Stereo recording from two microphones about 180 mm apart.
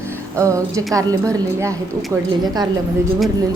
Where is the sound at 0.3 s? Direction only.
15° right (ahead or behind).